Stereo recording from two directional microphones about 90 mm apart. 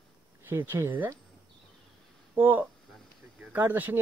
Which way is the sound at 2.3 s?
20° right (ahead or behind).